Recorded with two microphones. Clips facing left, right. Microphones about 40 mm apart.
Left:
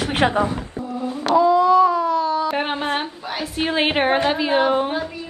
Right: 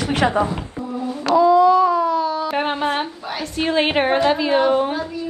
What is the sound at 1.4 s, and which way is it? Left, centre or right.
A woman's voice, centre.